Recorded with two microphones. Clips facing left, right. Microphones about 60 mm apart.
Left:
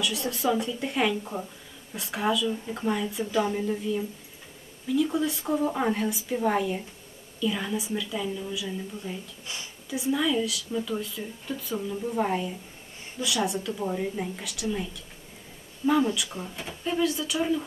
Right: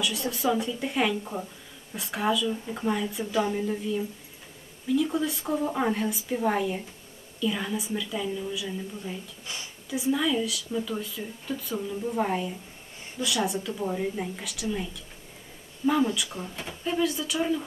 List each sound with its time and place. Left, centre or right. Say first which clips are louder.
0.0 s a woman's voice: even; centre